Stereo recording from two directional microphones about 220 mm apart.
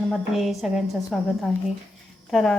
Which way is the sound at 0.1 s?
Centre (ahead or behind).